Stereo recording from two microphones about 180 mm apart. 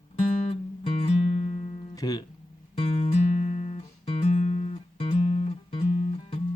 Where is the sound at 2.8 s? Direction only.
35° left (ahead or behind).